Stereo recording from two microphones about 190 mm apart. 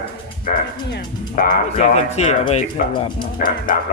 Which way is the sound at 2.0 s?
35° left (ahead or behind).